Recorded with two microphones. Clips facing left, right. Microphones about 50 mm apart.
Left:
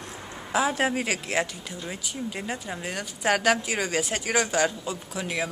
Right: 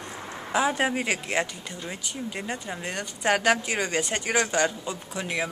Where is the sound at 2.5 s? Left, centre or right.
Centre.